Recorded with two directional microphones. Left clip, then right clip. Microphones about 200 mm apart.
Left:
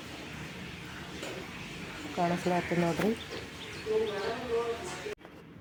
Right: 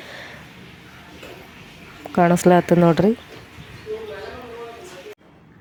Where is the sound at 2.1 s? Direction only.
55° right (ahead or behind).